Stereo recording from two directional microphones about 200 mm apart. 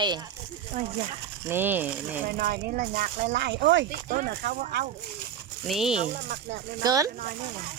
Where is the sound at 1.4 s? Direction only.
10° right (ahead or behind).